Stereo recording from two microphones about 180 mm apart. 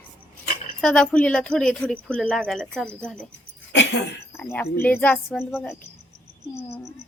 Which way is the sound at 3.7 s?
80° left.